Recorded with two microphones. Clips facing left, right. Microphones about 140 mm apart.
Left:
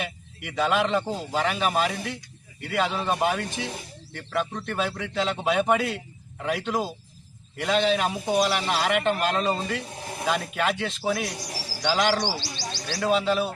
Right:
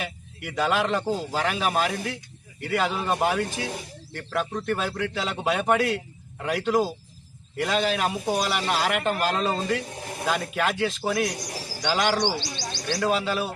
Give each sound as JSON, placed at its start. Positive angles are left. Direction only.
{"t": 0.0, "sound": "a man's voice", "side_deg": 0}
{"t": 12.4, "sound": "speech", "side_deg": -20}
{"t": 13.0, "sound": "a man's voice", "side_deg": 0}